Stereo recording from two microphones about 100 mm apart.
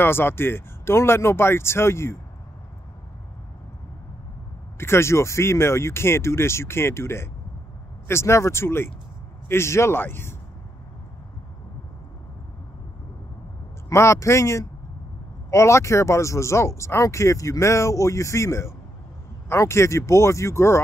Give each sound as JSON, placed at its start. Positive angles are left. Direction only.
{"t": 0.0, "sound": "speech", "side_deg": 20}
{"t": 4.7, "sound": "speech", "side_deg": 25}
{"t": 13.8, "sound": "speech", "side_deg": 30}